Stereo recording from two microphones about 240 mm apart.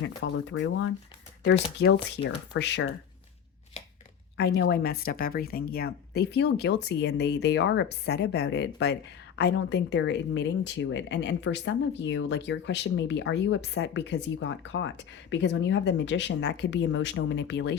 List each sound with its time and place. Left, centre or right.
0.2 s speech: left
1.8 s speech: left
3.8 s chopping: left
4.4 s speech: left